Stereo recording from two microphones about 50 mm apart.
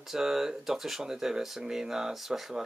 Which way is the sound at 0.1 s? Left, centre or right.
Centre.